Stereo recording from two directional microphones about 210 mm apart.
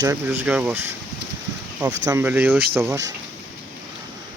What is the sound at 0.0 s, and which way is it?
Speech, 10° right (ahead or behind).